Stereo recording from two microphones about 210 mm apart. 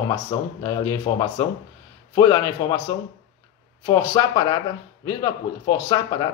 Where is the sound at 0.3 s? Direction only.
20° left (ahead or behind).